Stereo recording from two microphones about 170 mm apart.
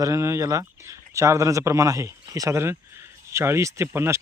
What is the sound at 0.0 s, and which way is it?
Speech, 20° right (ahead or behind).